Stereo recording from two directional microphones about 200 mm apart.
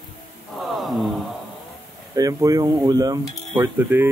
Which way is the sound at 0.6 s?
Centre (ahead or behind).